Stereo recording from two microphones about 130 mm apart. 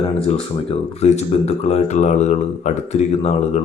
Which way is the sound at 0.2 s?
50° left (ahead or behind).